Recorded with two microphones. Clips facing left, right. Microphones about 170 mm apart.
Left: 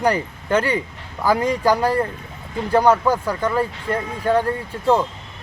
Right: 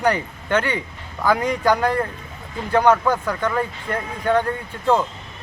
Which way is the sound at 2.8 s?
10° left (ahead or behind).